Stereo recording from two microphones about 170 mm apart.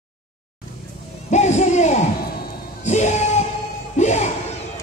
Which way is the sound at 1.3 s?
45° left (ahead or behind).